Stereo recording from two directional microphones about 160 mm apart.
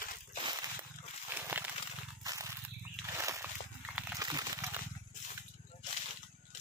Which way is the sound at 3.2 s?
15° right (ahead or behind).